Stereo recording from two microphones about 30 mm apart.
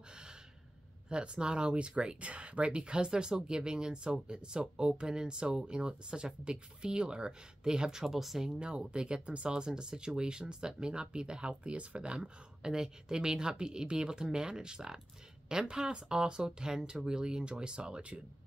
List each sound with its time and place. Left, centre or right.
1.0 s speech: right
2.8 s speech: right
8.0 s speech: centre
8.5 s speech: right
9.2 s speech: right
9.5 s speech: right
12.2 s speech: right